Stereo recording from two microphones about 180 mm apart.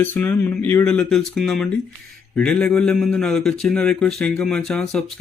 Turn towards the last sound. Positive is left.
turn(degrees=5)  # may be behind; listen again after turning